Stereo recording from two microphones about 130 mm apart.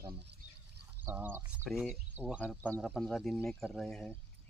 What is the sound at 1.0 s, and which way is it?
Speech, 15° right (ahead or behind).